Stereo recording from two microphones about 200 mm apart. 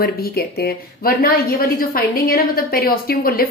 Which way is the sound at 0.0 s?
50° left (ahead or behind).